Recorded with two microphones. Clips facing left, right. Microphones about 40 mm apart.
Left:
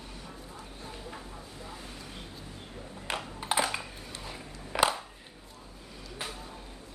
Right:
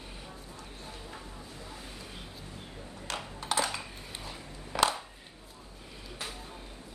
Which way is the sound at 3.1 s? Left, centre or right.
Left.